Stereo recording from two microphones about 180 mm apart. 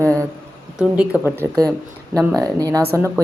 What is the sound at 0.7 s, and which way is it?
A woman's voice, 5° right (ahead or behind).